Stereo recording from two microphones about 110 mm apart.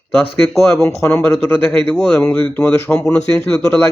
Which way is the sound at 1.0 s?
20° left (ahead or behind).